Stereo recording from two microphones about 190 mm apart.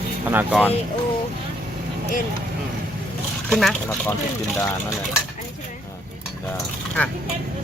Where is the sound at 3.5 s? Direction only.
5° left (ahead or behind).